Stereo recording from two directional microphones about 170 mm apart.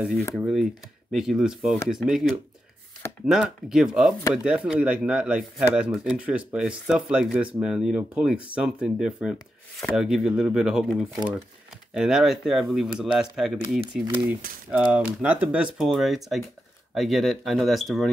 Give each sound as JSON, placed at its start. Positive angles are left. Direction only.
{"t": 0.4, "sound": "speech", "side_deg": 0}
{"t": 14.0, "sound": "speech", "side_deg": -30}
{"t": 14.7, "sound": "speech", "side_deg": -10}